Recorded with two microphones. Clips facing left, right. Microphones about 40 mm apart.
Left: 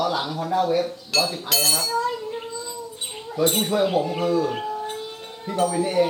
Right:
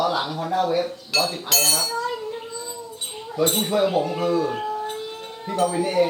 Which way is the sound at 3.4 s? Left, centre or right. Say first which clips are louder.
Even; centre.